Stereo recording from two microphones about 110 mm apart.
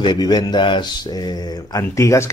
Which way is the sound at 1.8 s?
30° left (ahead or behind).